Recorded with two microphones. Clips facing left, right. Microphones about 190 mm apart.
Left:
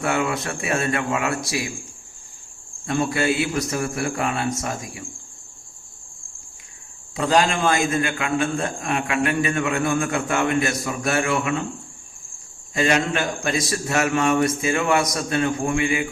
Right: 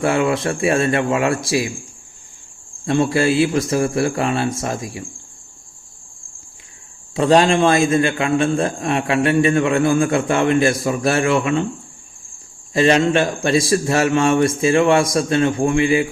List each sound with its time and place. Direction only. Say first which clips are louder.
0.0 s a man's voice: right 6 dB; 30° right (ahead or behind)
2.8 s a man's voice: right 5 dB; 30° right (ahead or behind)
7.2 s a man's voice: right 6 dB; 30° right (ahead or behind)
12.7 s a man's voice: right 6 dB; 30° right (ahead or behind)